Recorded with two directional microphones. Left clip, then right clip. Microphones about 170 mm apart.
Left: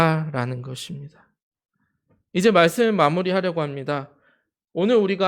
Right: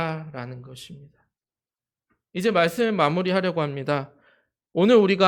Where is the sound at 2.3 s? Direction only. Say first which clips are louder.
Left 5 dB; 35° left (ahead or behind).